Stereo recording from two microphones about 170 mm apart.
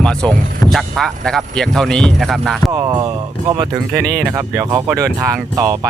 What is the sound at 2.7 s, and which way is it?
Speech, 25° right (ahead or behind).